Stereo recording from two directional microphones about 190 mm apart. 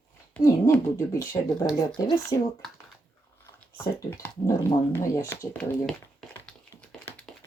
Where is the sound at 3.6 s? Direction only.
10° left (ahead or behind).